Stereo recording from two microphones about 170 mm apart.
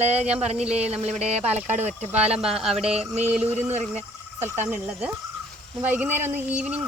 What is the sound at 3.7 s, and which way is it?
Speech, 40° right (ahead or behind).